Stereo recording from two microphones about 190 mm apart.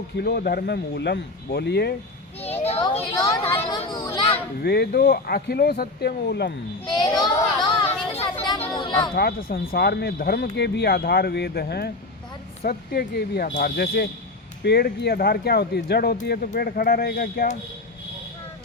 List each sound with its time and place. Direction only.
0.2 s speech: 55° left (ahead or behind)
2.4 s a child's voice: 30° left (ahead or behind)
4.6 s speech: 55° left (ahead or behind)
6.8 s a child's voice: 20° left (ahead or behind)
8.1 s children playing: 30° left (ahead or behind)
8.7 s a sound: 25° left (ahead or behind)
9.1 s speech: 55° left (ahead or behind)